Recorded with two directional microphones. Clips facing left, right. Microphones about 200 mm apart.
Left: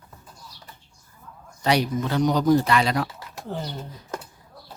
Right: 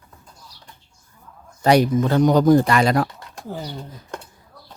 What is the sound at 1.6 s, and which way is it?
Speech, 50° right (ahead or behind).